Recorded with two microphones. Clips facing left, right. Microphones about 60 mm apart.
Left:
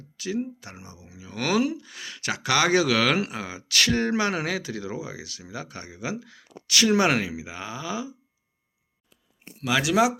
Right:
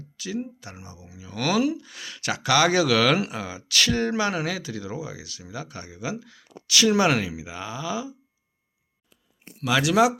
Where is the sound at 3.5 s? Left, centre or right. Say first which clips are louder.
Even; left.